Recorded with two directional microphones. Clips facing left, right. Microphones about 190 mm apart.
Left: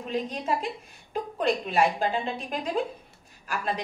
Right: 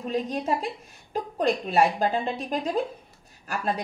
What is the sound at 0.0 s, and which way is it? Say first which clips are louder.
Speech: right 3 dB; 40° right (ahead or behind).